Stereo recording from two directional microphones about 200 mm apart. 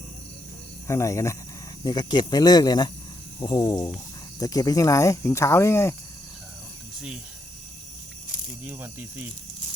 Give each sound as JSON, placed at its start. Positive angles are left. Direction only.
{"t": 0.9, "sound": "speech", "side_deg": 15}
{"t": 8.6, "sound": "speech", "side_deg": -10}